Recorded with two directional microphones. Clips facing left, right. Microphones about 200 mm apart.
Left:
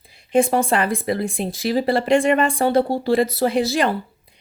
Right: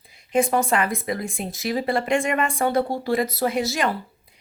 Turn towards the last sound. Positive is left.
turn(degrees=30)  # may be behind; listen again after turning